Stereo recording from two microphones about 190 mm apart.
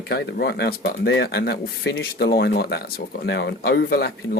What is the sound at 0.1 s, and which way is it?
Speech, 60° left (ahead or behind).